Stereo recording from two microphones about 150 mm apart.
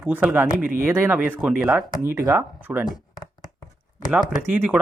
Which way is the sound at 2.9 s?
25° left (ahead or behind).